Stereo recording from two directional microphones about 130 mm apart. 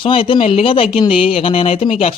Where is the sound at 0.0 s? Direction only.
40° left (ahead or behind).